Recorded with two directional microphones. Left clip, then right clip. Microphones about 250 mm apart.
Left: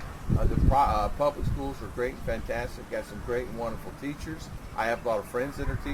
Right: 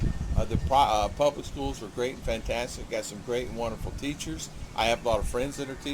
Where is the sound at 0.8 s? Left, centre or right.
Centre.